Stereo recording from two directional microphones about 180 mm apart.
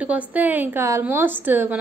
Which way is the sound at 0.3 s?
10° right (ahead or behind).